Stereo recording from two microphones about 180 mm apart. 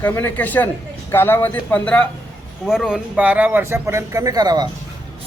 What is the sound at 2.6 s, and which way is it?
Speech, 5° right (ahead or behind).